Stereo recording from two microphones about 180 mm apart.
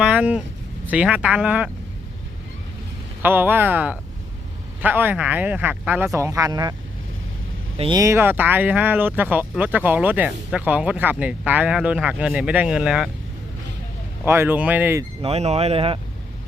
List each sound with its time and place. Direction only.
0.0 s speech: 5° right (ahead or behind)
3.2 s speech: 10° right (ahead or behind)
7.8 s speech: 25° right (ahead or behind); by 13.1 s 5° right (ahead or behind)
14.3 s speech: 10° right (ahead or behind)
15.2 s speech: 35° right (ahead or behind)